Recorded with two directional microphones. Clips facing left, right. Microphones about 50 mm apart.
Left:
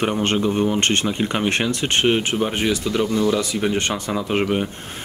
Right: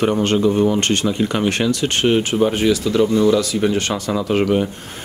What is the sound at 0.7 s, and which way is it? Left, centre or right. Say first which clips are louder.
Speech: right 1 dB; left.